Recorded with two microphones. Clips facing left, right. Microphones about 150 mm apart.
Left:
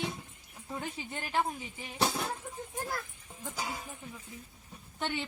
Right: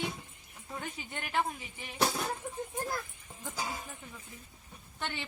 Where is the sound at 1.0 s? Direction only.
30° left (ahead or behind).